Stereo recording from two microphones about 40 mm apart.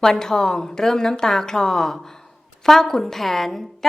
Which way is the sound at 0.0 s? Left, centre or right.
Centre.